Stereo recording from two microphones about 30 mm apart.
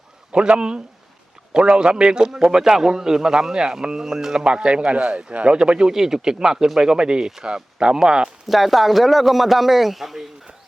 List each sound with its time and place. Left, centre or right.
0.3 s a man's voice: right
2.4 s a man's voice: centre
4.4 s a man's voice: right
4.9 s speech: right
5.5 s a man's voice: right
5.9 s a man's voice: centre
8.4 s a man's voice: centre